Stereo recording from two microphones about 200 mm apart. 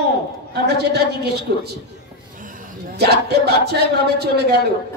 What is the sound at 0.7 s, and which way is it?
A man's voice, 55° right (ahead or behind).